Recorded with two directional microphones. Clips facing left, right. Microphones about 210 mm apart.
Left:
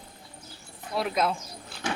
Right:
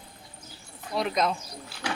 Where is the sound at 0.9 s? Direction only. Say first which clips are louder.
Even; 5° left (ahead or behind).